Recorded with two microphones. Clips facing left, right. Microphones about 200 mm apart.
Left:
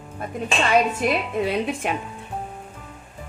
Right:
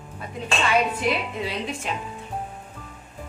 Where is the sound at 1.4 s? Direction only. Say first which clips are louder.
Left 6 dB; 55° left (ahead or behind).